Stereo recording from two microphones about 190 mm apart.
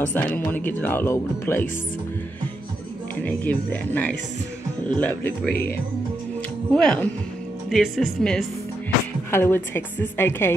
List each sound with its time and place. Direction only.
0.0 s speech: 10° left (ahead or behind)
3.3 s speech: 10° left (ahead or behind)
6.7 s speech: 5° left (ahead or behind)